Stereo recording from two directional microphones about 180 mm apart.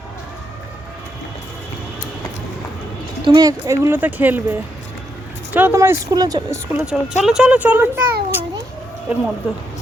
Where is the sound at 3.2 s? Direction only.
25° right (ahead or behind).